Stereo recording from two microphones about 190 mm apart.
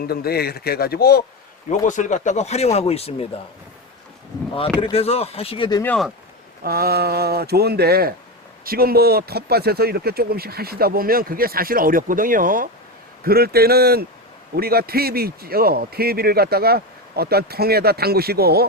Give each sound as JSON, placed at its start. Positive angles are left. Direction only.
{"t": 0.0, "sound": "speech", "side_deg": 55}
{"t": 1.8, "sound": "speech", "side_deg": 40}
{"t": 4.3, "sound": "a sound", "side_deg": 20}
{"t": 4.8, "sound": "speech", "side_deg": 30}
{"t": 5.8, "sound": "speech", "side_deg": 5}
{"t": 6.6, "sound": "a man's voice", "side_deg": -55}